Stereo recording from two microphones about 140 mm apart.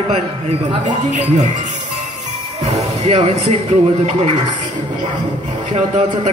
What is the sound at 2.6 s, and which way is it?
Music, 55° right (ahead or behind).